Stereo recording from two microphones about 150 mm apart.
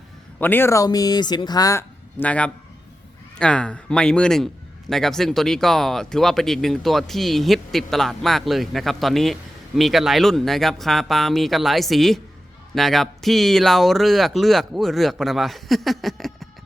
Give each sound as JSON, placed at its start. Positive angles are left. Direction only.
{"t": 0.3, "sound": "speech", "side_deg": 15}